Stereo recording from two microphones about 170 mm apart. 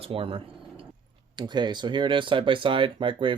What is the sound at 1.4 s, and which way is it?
Speech, 25° right (ahead or behind).